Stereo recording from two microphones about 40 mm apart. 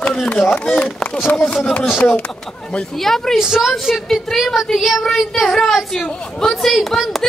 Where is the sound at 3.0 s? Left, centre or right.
Centre.